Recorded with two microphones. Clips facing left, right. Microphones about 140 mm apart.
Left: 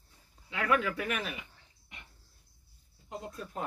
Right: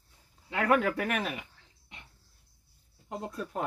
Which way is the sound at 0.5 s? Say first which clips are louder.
Right 4 dB; 50° right (ahead or behind).